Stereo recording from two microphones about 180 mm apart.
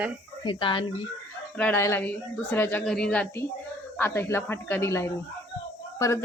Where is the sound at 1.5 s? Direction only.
10° left (ahead or behind).